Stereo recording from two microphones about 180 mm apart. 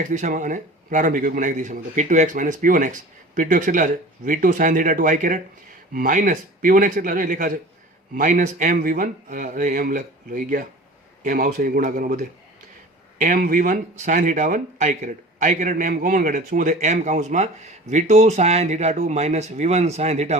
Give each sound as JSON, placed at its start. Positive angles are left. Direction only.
{"t": 0.1, "sound": "a man's voice", "side_deg": -45}